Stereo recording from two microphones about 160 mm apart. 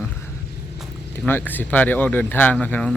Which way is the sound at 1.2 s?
10° left (ahead or behind).